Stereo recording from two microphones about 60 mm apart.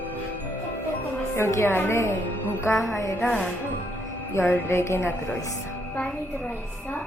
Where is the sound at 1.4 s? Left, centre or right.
Left.